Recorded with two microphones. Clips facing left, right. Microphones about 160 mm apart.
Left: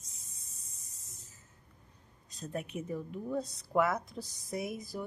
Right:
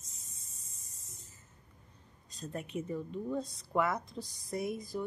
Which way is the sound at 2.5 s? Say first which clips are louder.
Even; 10° left (ahead or behind).